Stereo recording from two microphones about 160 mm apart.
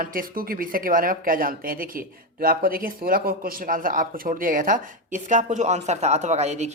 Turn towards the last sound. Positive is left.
turn(degrees=-45)  # may be behind; listen again after turning